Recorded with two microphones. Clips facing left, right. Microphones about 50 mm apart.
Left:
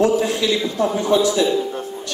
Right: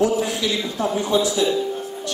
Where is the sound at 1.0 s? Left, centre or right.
Left.